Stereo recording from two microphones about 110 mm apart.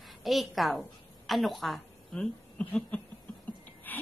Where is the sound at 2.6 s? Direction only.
10° left (ahead or behind).